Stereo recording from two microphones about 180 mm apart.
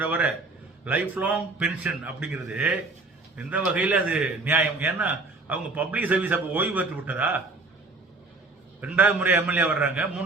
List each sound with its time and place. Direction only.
0.0 s a man's voice: 10° right (ahead or behind)
8.8 s a man's voice: 10° right (ahead or behind)